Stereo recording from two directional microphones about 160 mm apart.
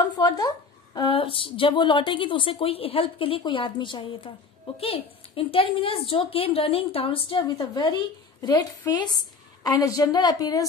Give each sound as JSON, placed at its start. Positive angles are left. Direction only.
{"t": 0.0, "sound": "a woman's voice", "side_deg": 25}